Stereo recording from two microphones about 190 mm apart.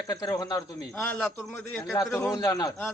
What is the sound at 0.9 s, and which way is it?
Speech, 5° left (ahead or behind).